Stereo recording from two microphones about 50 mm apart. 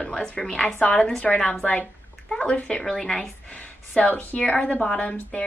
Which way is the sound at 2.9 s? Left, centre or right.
Centre.